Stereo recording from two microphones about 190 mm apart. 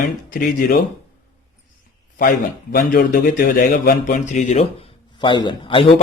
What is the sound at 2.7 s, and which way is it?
Speech, 65° left (ahead or behind).